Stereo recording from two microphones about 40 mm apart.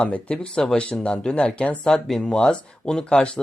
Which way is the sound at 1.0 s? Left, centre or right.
Left.